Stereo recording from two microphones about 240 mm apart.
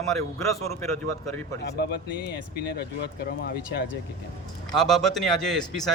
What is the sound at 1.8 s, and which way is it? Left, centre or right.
Speech, left.